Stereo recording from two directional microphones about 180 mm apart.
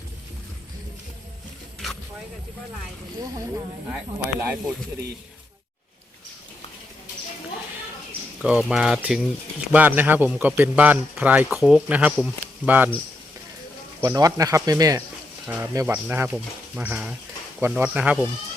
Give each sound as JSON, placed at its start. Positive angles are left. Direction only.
{"t": 3.2, "sound": "speech", "side_deg": -20}
{"t": 8.4, "sound": "speech", "side_deg": -5}
{"t": 14.0, "sound": "speech", "side_deg": -20}